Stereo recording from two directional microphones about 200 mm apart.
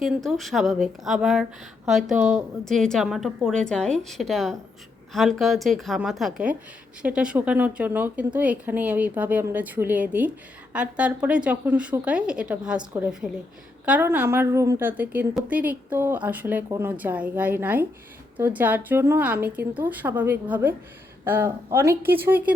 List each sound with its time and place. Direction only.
0.0 s a woman's voice: centre (ahead or behind)
12.8 s speech: 15° right (ahead or behind)